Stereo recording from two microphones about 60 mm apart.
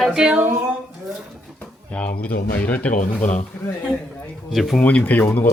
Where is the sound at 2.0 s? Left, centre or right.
Left.